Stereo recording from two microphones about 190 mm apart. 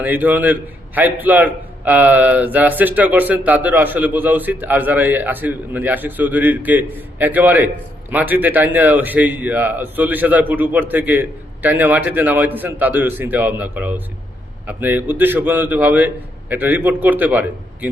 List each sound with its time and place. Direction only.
0.0 s a man's voice: 10° right (ahead or behind)